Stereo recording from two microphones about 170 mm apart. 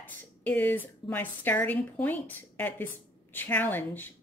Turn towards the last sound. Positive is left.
turn(degrees=10)  # may be behind; listen again after turning